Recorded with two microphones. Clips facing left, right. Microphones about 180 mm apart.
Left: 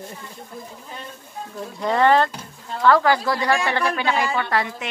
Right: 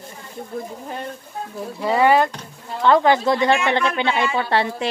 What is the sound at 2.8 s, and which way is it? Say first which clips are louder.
A woman's voice: right 2 dB; 20° right (ahead or behind).